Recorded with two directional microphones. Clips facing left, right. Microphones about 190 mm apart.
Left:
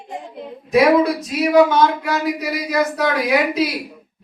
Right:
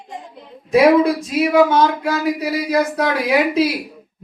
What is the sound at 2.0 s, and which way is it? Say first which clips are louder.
Speech: right 2 dB; 30° right (ahead or behind).